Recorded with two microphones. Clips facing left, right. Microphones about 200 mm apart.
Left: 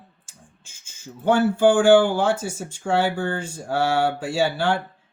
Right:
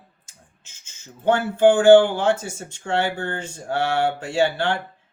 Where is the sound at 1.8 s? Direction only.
10° left (ahead or behind).